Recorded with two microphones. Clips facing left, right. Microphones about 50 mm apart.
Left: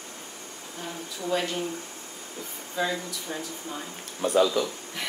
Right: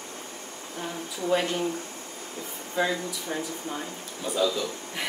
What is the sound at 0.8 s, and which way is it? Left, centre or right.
Speech, centre.